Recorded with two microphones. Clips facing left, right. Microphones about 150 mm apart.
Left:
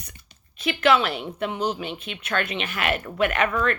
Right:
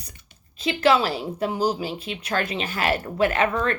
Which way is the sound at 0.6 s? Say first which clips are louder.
Right 1 dB; 30° right (ahead or behind).